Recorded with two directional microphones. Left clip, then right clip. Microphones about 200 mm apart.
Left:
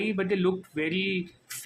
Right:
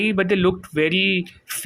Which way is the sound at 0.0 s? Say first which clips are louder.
Right 8 dB; 30° right (ahead or behind).